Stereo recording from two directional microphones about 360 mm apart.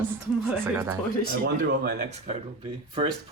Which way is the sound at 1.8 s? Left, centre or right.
Right.